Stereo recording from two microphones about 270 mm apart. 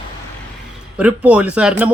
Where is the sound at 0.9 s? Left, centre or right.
Centre.